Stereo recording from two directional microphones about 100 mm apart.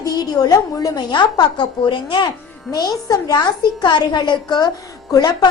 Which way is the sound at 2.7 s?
40° left (ahead or behind).